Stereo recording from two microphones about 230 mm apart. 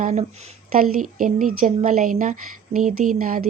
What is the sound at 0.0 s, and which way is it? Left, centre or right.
A woman's voice, right.